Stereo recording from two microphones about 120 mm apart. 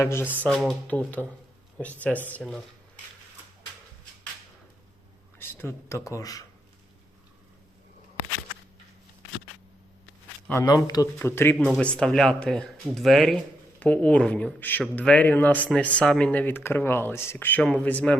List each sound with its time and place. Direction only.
0.0 s speech: 20° left (ahead or behind)
0.4 s speech: centre (ahead or behind)
0.9 s speech: 15° left (ahead or behind)
5.4 s speech: 20° left (ahead or behind)
10.5 s speech: 25° left (ahead or behind)
11.5 s speech: centre (ahead or behind)
13.7 s speech: 10° left (ahead or behind)